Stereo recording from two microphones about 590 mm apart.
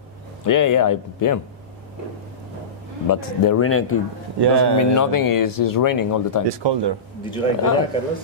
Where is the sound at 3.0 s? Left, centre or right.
Left.